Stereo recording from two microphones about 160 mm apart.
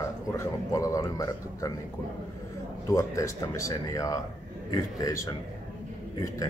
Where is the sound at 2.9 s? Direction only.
20° left (ahead or behind).